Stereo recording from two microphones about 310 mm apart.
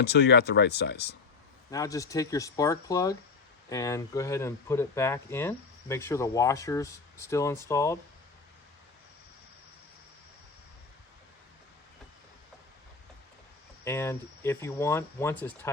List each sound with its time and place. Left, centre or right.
0.0 s speech: left
1.7 s speech: centre
13.8 s speech: centre